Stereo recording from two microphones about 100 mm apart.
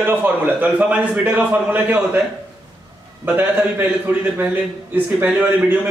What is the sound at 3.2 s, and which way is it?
A man's voice, 20° right (ahead or behind).